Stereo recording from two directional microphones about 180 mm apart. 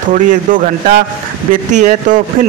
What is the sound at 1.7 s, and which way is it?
Speech, 45° right (ahead or behind).